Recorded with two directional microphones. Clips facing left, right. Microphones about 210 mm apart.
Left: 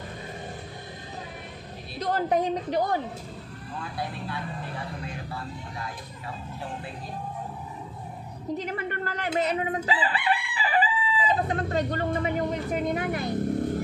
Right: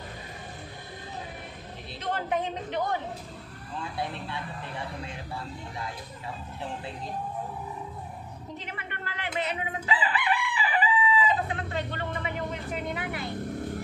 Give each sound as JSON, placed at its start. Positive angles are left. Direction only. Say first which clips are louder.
{"t": 2.0, "sound": "a woman's voice", "louder": "left 5 dB", "side_deg": 35}
{"t": 4.0, "sound": "speech", "louder": "left 2 dB", "side_deg": -25}
{"t": 8.5, "sound": "speech", "louder": "left 10 dB", "side_deg": 40}